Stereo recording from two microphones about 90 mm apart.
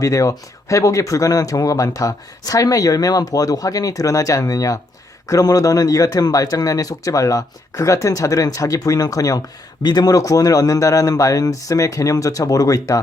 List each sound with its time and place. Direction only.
0.0 s speech: 35° left (ahead or behind)